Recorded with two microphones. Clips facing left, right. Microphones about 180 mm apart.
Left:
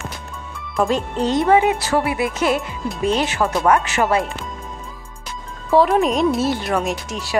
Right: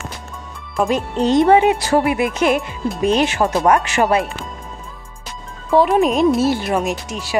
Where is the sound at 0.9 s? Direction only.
20° right (ahead or behind).